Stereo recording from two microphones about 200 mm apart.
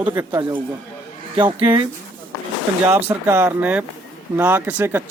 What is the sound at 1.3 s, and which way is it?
Speech, 25° right (ahead or behind).